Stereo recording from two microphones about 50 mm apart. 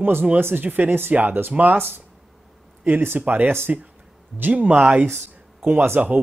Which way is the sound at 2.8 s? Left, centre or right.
Right.